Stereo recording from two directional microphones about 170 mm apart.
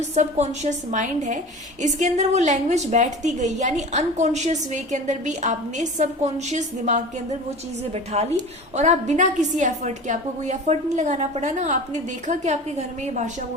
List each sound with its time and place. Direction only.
0.1 s a woman's voice: 40° right (ahead or behind)